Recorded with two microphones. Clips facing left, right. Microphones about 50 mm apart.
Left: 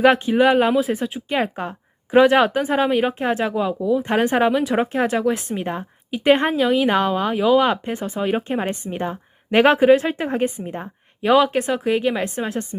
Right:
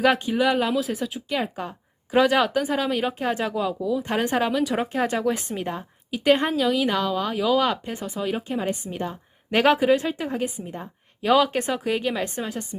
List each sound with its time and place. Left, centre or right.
0.0 s speech: left
5.6 s a woman's voice: left
8.6 s a woman's voice: left
11.2 s speech: centre